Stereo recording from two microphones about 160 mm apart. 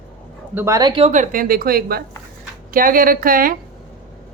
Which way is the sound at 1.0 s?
50° right (ahead or behind).